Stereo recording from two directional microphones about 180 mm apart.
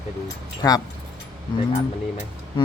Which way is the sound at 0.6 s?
20° left (ahead or behind).